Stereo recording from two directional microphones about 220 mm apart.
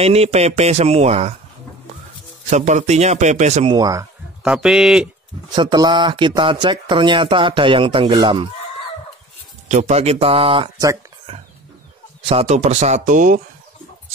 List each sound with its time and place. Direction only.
0.0 s speech: 30° right (ahead or behind)
2.5 s a man's voice: 30° right (ahead or behind)
3.7 s speech: 15° right (ahead or behind)
4.4 s speech: centre (ahead or behind)
5.5 s speech: 20° right (ahead or behind)
9.7 s a man's voice: 30° right (ahead or behind)